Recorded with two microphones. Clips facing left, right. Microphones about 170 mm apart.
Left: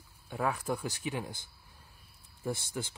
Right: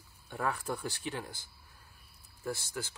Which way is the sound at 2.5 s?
20° left (ahead or behind).